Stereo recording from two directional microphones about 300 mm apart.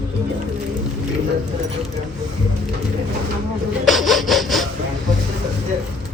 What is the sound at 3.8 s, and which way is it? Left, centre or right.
Sawing, centre.